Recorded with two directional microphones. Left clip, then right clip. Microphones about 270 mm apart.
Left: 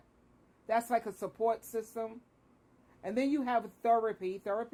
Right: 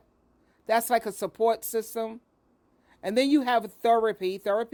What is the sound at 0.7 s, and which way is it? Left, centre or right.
Speech, right.